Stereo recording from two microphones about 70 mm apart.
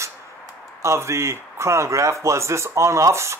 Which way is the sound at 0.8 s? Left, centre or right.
Right.